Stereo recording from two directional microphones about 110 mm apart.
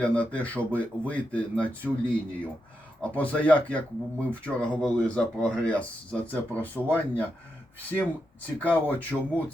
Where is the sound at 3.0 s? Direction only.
15° left (ahead or behind).